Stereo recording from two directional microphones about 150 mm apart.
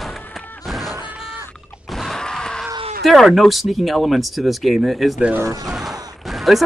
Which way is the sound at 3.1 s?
Centre (ahead or behind).